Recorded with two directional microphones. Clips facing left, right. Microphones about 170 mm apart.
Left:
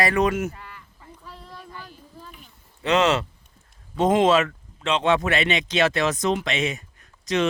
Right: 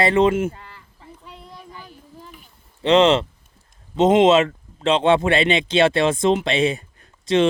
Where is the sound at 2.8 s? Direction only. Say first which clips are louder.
Right 5 dB; 30° right (ahead or behind).